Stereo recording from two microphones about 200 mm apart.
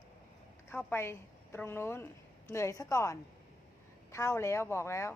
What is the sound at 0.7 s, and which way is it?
A woman's voice, 10° left (ahead or behind).